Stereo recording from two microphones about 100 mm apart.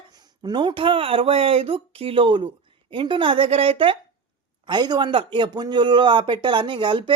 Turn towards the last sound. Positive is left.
turn(degrees=-50)  # may be behind; listen again after turning